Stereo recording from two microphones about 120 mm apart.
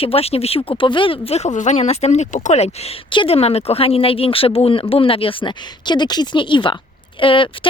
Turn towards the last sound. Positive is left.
turn(degrees=45)  # may be behind; listen again after turning